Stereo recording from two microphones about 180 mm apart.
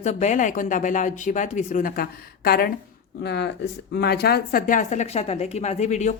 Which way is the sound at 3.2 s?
65° left (ahead or behind).